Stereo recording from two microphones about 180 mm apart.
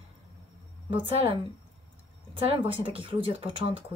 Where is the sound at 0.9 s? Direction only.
30° right (ahead or behind).